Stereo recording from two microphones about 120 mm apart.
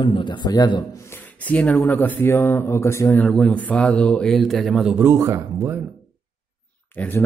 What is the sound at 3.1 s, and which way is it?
Speech, 5° left (ahead or behind).